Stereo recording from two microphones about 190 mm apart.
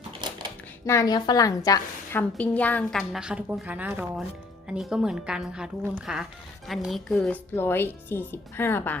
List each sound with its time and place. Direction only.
0.2 s a sound: 25° right (ahead or behind)
0.9 s a woman's voice: 20° left (ahead or behind)
2.2 s a woman's voice: 5° left (ahead or behind)